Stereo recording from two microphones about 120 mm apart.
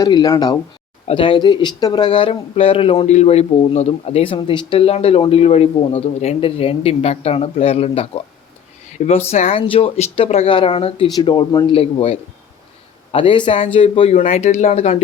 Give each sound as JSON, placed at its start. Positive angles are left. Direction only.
{"t": 0.0, "sound": "speech", "side_deg": 35}
{"t": 1.0, "sound": "speech", "side_deg": 45}
{"t": 3.1, "sound": "a man's voice", "side_deg": 65}
{"t": 9.0, "sound": "speech", "side_deg": 65}
{"t": 14.2, "sound": "speech", "side_deg": 75}